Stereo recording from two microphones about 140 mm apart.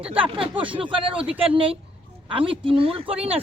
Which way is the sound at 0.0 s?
40° right (ahead or behind).